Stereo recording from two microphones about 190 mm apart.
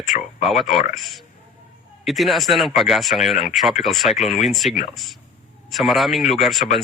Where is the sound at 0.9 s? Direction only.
Centre (ahead or behind).